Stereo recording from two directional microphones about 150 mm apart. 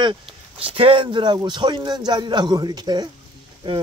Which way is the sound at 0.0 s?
35° right (ahead or behind).